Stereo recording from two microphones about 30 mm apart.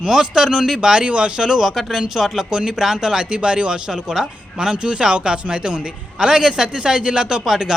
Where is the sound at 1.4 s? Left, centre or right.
Centre.